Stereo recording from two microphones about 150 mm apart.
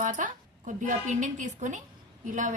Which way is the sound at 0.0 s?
60° right (ahead or behind).